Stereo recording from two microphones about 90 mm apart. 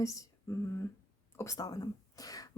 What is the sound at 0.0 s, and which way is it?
Speech, 40° left (ahead or behind).